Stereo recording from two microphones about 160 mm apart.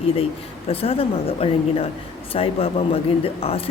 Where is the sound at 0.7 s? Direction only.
35° left (ahead or behind).